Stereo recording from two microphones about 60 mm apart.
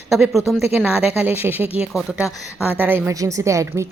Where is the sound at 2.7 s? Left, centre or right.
Right.